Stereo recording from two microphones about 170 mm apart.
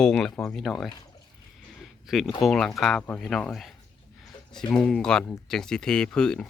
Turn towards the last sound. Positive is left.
turn(degrees=5)  # may be behind; listen again after turning